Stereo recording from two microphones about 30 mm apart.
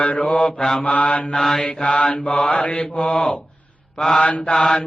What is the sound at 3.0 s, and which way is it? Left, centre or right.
Mantra, centre.